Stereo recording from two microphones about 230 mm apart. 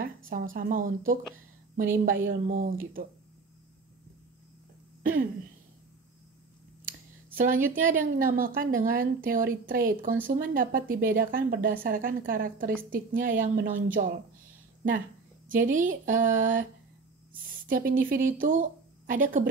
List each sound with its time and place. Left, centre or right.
0.0 s a woman's voice: right
7.3 s a woman's voice: right
15.4 s a woman's voice: right